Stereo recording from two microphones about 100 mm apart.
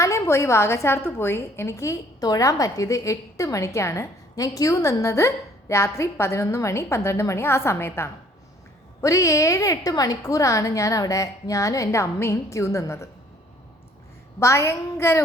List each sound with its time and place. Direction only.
0.0 s a woman's voice: 30° left (ahead or behind)
14.3 s a woman's voice: 30° left (ahead or behind)